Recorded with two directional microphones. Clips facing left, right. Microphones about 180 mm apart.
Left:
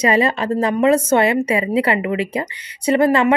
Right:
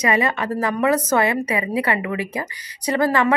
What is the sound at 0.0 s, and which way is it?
A woman's voice, 30° left (ahead or behind).